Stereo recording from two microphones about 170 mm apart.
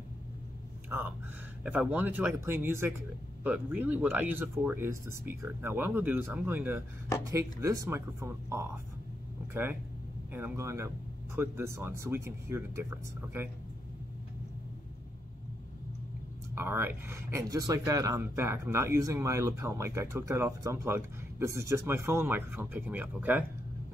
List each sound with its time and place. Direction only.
0.8 s a sound: 10° right (ahead or behind)
1.6 s speech: 10° right (ahead or behind)
16.5 s speech: 15° right (ahead or behind)